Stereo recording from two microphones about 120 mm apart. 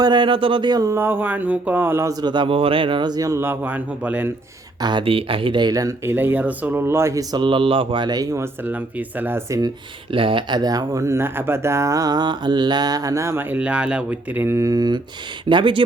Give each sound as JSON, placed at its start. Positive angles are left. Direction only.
{"t": 0.0, "sound": "speech", "side_deg": -40}
{"t": 0.9, "sound": "speech", "side_deg": -20}
{"t": 2.2, "sound": "speech", "side_deg": -40}
{"t": 4.8, "sound": "speech", "side_deg": -40}
{"t": 6.1, "sound": "speech", "side_deg": -15}
{"t": 7.4, "sound": "speech", "side_deg": -45}
{"t": 8.6, "sound": "speech", "side_deg": -15}
{"t": 10.1, "sound": "speech", "side_deg": -45}
{"t": 13.6, "sound": "speech", "side_deg": -10}